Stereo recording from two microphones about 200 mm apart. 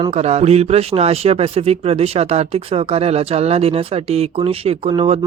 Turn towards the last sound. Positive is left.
turn(degrees=-30)  # may be behind; listen again after turning